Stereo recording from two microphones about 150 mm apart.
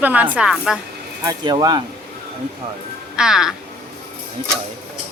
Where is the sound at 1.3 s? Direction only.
25° right (ahead or behind).